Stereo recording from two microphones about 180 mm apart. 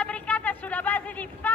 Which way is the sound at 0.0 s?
5° left (ahead or behind).